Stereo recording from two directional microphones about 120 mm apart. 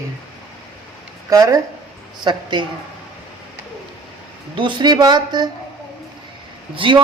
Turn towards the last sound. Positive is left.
turn(degrees=-45)  # may be behind; listen again after turning